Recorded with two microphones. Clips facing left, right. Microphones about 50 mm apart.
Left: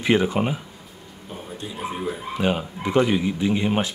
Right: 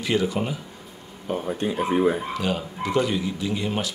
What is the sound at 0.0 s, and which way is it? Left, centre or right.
Speech, left.